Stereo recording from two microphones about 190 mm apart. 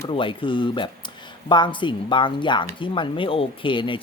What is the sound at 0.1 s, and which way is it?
Speech, 25° left (ahead or behind).